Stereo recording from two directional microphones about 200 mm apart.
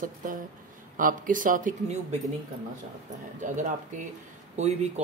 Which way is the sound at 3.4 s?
40° right (ahead or behind).